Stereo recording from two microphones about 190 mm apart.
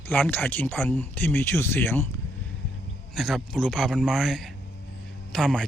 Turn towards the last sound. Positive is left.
turn(degrees=5)  # may be behind; listen again after turning